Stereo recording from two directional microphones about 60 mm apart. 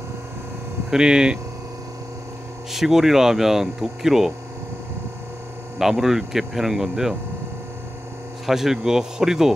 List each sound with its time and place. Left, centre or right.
0.8 s speech: centre
2.7 s speech: centre
5.8 s speech: centre
8.5 s speech: centre